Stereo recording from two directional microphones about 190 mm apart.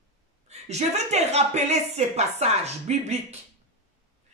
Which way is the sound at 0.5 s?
35° right (ahead or behind).